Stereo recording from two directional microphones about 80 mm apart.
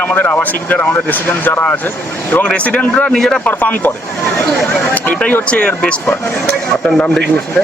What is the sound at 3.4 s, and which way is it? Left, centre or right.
Speech, left.